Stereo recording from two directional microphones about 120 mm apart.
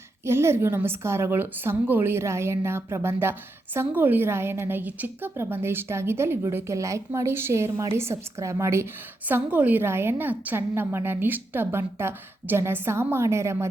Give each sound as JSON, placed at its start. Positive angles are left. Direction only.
{"t": 0.3, "sound": "a woman's voice", "side_deg": -20}